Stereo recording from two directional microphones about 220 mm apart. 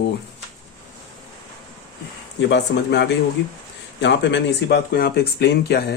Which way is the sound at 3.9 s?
55° left (ahead or behind).